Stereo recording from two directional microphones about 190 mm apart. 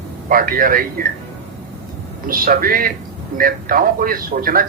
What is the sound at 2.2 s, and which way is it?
A man's voice, 50° right (ahead or behind).